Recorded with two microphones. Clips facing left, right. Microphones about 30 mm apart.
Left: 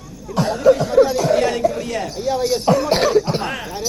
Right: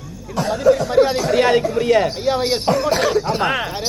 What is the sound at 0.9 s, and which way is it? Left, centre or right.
Speech, right.